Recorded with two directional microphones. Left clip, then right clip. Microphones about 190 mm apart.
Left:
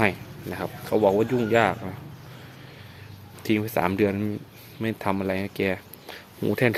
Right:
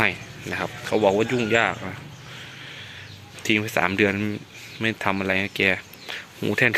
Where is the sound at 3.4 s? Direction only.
10° left (ahead or behind).